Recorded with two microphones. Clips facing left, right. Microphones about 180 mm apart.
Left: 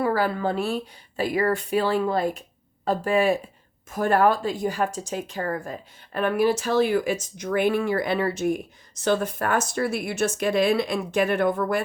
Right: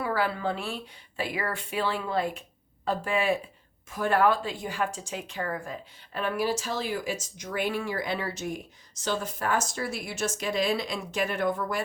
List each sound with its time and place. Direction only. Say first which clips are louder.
0.0 s a woman's voice: left 5 dB; 45° left (ahead or behind)